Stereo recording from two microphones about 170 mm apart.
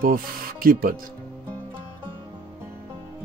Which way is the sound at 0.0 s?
60° right (ahead or behind).